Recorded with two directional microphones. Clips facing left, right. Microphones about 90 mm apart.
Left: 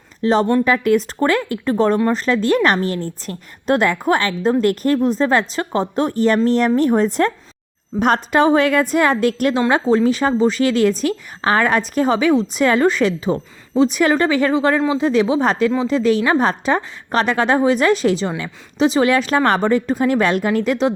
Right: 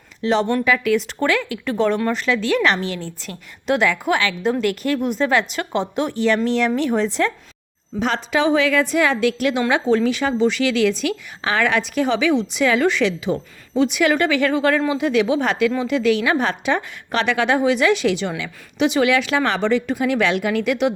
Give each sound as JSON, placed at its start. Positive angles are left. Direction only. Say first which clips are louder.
{"t": 0.2, "sound": "a woman's voice", "louder": "left 3 dB", "side_deg": 40}